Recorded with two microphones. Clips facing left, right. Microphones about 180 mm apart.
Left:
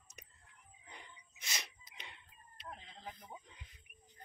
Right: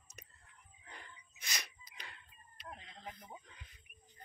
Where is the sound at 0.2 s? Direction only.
15° left (ahead or behind).